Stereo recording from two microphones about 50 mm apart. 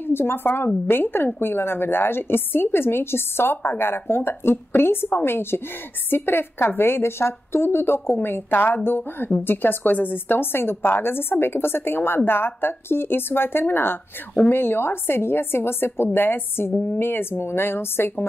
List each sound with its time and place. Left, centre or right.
0.0 s a woman's voice: left